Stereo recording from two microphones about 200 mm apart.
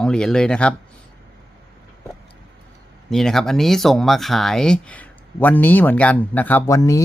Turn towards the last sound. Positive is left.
turn(degrees=15)  # may be behind; listen again after turning